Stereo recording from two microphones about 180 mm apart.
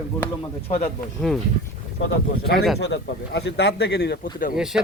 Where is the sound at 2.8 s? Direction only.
75° left (ahead or behind).